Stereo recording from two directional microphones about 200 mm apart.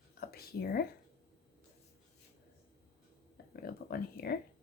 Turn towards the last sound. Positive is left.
turn(degrees=50)  # may be behind; listen again after turning